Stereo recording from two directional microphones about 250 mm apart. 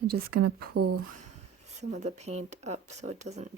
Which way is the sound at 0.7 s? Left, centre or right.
Right.